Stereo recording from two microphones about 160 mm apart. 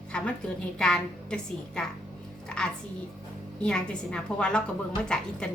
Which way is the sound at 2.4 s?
5° left (ahead or behind).